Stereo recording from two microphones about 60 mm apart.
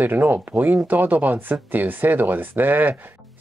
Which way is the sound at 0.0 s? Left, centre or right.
Right.